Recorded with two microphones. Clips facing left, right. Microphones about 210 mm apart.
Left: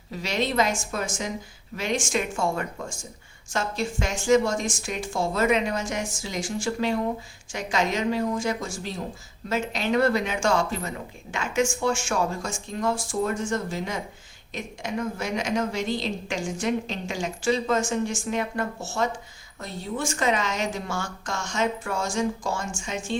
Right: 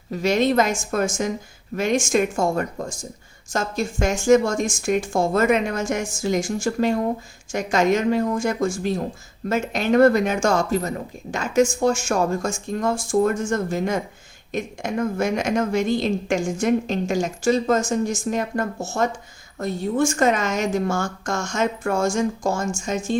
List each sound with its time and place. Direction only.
0.1 s a woman's voice: 50° right (ahead or behind)